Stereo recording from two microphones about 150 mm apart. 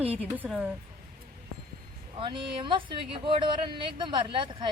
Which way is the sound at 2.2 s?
30° right (ahead or behind).